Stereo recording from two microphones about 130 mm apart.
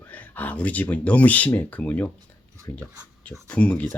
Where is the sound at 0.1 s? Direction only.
10° left (ahead or behind).